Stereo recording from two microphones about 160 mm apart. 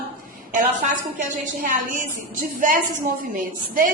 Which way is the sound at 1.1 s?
55° right (ahead or behind).